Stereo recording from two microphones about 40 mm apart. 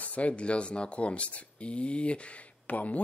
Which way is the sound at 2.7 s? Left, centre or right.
Left.